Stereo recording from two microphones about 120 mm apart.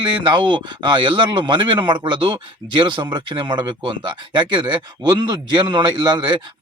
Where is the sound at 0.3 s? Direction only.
40° right (ahead or behind).